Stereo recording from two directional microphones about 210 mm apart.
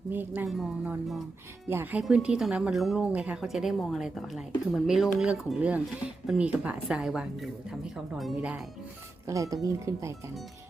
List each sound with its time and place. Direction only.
0.1 s speech: 10° right (ahead or behind)
9.2 s speech: 15° right (ahead or behind)